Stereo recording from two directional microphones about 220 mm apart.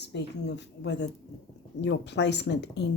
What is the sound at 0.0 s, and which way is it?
Speech, 50° left (ahead or behind).